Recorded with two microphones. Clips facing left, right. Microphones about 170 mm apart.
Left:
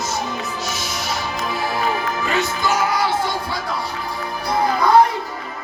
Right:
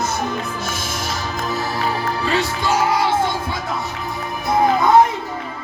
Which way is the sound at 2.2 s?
30° right (ahead or behind).